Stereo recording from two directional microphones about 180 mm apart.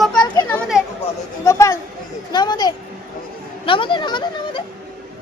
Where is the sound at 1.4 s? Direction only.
15° left (ahead or behind).